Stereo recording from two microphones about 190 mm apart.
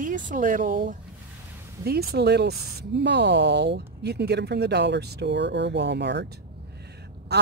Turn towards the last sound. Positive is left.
turn(degrees=-60)  # may be behind; listen again after turning